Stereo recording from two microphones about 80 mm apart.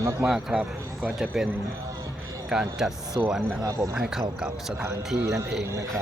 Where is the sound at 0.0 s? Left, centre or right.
Right.